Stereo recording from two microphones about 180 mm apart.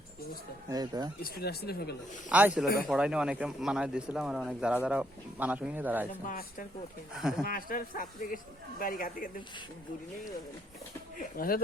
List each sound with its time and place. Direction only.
0.7 s speech: 20° right (ahead or behind)
1.2 s speech: 60° left (ahead or behind)
2.3 s speech: 10° right (ahead or behind)
6.2 s speech: 50° left (ahead or behind)
7.2 s speech: 5° right (ahead or behind)
7.4 s speech: 50° left (ahead or behind)
11.2 s speech: 55° left (ahead or behind)